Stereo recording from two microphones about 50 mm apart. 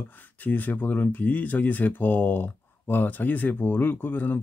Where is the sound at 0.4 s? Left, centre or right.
Left.